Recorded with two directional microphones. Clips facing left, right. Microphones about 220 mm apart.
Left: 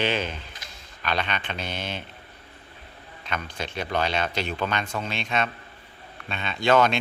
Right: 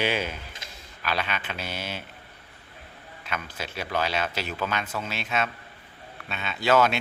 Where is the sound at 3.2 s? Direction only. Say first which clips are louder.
Left 2 dB; 5° right (ahead or behind).